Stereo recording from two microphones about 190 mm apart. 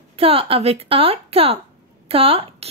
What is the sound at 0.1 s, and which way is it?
A woman's voice, 30° right (ahead or behind).